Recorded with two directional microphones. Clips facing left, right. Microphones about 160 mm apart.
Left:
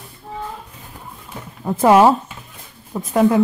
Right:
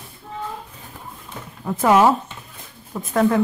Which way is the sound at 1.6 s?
25° left (ahead or behind).